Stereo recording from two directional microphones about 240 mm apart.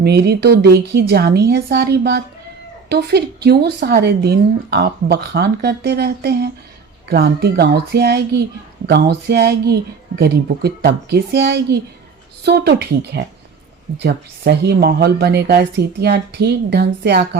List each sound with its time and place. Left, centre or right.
0.0 s speech: right